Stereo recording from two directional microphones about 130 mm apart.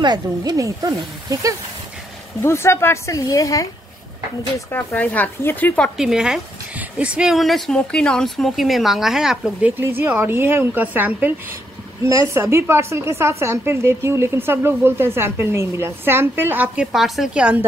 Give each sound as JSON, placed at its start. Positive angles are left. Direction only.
{"t": 0.0, "sound": "a woman's voice", "side_deg": -30}
{"t": 2.4, "sound": "speech", "side_deg": 20}
{"t": 4.6, "sound": "speech", "side_deg": 15}
{"t": 5.9, "sound": "a woman's voice", "side_deg": -5}
{"t": 16.8, "sound": "speech", "side_deg": 0}